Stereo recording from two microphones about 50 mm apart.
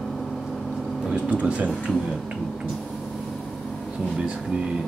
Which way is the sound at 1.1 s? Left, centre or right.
Right.